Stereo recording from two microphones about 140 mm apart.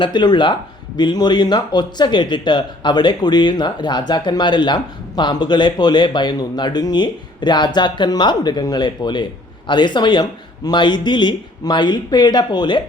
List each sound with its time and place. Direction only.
0.0 s speech: 30° left (ahead or behind)